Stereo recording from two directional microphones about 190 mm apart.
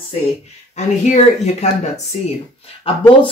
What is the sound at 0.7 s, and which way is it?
Speech, 35° left (ahead or behind).